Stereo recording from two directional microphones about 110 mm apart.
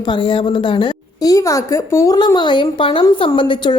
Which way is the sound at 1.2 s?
30° left (ahead or behind).